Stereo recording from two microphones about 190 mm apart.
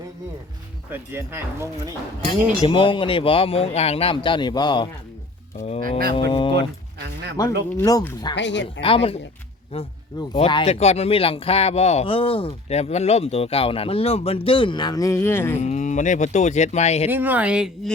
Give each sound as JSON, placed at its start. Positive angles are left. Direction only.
{"t": 0.9, "sound": "speech", "side_deg": -10}
{"t": 2.6, "sound": "speech", "side_deg": 30}
{"t": 8.4, "sound": "speech", "side_deg": 70}
{"t": 8.8, "sound": "speech", "side_deg": 30}
{"t": 15.6, "sound": "speech", "side_deg": 40}
{"t": 17.1, "sound": "speech", "side_deg": -10}